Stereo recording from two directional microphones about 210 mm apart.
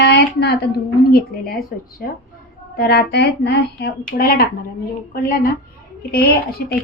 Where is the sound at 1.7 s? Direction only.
40° left (ahead or behind).